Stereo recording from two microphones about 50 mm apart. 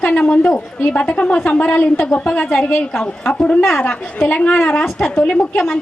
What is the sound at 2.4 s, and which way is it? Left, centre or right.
Speech, centre.